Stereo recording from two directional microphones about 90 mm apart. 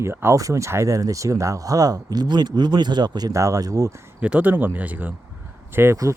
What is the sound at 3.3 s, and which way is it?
Speech, 35° right (ahead or behind).